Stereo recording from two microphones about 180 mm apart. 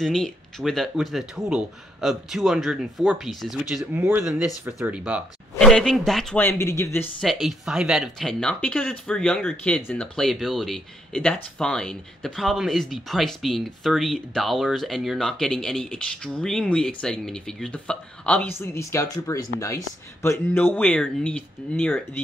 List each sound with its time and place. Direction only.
0.0 s speech: centre (ahead or behind)
7.2 s speech: centre (ahead or behind)